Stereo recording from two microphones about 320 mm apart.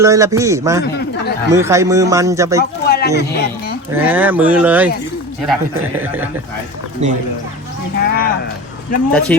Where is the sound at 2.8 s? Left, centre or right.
Left.